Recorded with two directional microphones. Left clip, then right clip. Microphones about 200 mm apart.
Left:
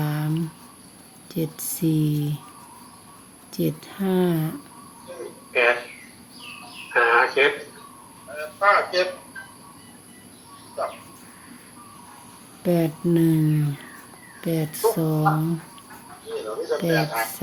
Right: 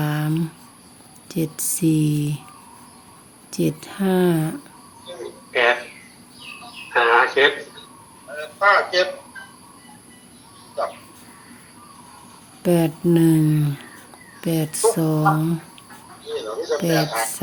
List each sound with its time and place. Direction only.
0.0 s a sound: 25° right (ahead or behind)
1.3 s speech: 25° right (ahead or behind)
3.5 s speech: 25° right (ahead or behind)
5.1 s cricket: 35° right (ahead or behind)
6.9 s a sound: 35° right (ahead or behind)
12.6 s speech: 25° right (ahead or behind)
16.3 s snake: 35° right (ahead or behind)
16.9 s speech: 35° right (ahead or behind)